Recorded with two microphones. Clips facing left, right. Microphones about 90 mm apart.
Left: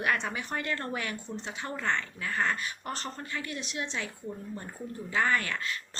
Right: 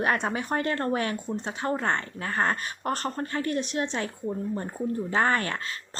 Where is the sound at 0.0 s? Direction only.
35° right (ahead or behind).